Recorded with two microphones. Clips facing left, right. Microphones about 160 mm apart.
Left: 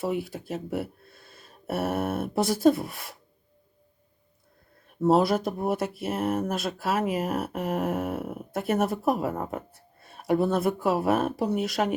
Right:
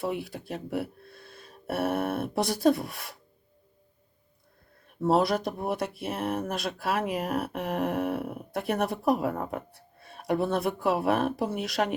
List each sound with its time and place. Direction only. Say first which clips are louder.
0.0 s speech: left 3 dB; centre (ahead or behind)
4.9 s speech: left 3 dB; centre (ahead or behind)